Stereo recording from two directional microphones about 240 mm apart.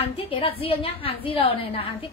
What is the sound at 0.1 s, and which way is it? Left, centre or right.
A woman's voice, left.